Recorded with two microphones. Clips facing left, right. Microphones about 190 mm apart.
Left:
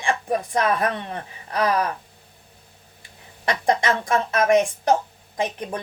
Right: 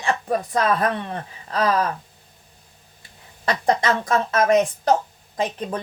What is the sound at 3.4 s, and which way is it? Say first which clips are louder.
A woman's voice: right 1 dB; 15° left (ahead or behind).